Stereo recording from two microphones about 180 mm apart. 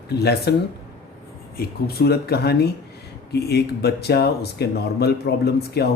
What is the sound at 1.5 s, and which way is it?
Speech, 60° left (ahead or behind).